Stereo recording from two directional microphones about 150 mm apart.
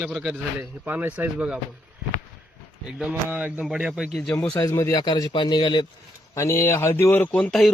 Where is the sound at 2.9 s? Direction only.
5° right (ahead or behind).